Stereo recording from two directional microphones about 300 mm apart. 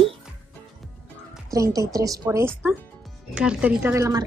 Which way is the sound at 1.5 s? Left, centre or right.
Centre.